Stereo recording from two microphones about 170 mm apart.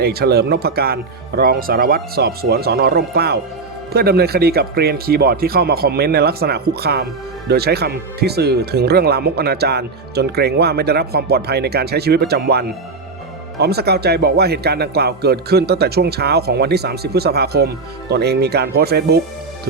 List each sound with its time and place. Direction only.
0.0 s speech: 65° right (ahead or behind)